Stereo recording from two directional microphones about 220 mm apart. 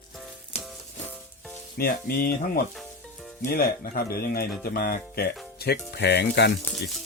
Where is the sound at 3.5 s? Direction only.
40° left (ahead or behind).